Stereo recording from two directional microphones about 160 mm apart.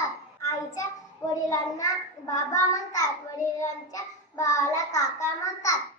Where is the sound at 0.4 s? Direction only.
20° left (ahead or behind).